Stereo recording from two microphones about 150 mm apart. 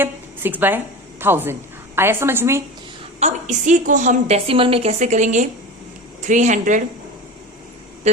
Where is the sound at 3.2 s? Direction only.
50° right (ahead or behind).